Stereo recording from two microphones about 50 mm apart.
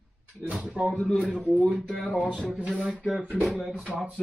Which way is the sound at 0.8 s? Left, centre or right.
Centre.